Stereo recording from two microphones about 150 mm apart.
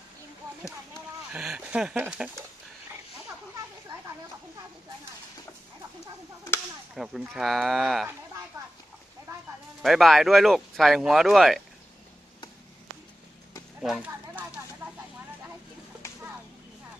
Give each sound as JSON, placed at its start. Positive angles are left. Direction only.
{"t": 1.3, "sound": "speech", "side_deg": -5}
{"t": 7.0, "sound": "speech", "side_deg": -5}
{"t": 9.3, "sound": "a sound", "side_deg": -20}
{"t": 9.8, "sound": "speech", "side_deg": 0}
{"t": 13.7, "sound": "speech", "side_deg": -5}